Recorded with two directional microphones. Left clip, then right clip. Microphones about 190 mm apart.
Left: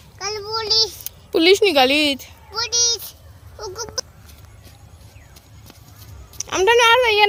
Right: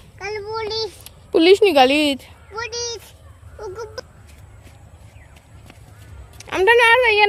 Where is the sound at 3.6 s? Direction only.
10° right (ahead or behind).